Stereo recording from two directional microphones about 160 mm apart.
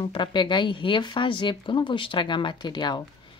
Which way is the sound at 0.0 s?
30° left (ahead or behind).